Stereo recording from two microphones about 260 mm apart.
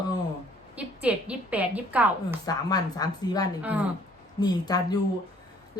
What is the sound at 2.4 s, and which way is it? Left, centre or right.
A woman's voice, centre.